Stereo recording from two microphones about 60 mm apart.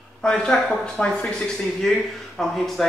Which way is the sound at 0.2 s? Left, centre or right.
Centre.